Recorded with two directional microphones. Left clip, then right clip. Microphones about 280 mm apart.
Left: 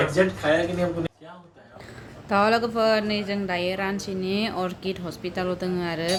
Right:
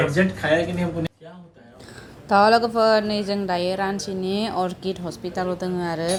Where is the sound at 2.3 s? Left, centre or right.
Centre.